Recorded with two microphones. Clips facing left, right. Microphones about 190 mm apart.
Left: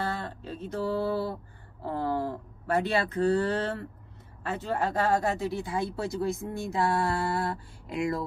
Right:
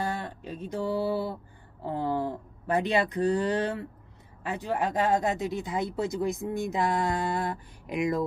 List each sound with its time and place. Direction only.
0.0 s mantra: 15° right (ahead or behind)
1.9 s a sound: 15° right (ahead or behind)
4.4 s speech: 15° right (ahead or behind)